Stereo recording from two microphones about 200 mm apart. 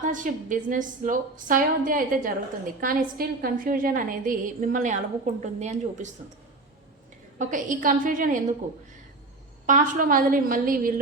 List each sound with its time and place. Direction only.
0.0 s a woman's voice: 40° right (ahead or behind)
7.3 s a woman's voice: 40° right (ahead or behind)
9.6 s a woman's voice: 40° right (ahead or behind)